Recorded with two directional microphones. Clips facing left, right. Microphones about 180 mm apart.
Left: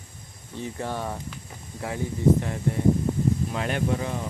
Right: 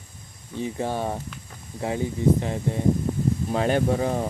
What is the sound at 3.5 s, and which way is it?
Speech, 35° right (ahead or behind).